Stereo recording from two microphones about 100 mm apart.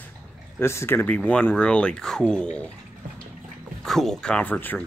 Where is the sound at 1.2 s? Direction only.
15° left (ahead or behind).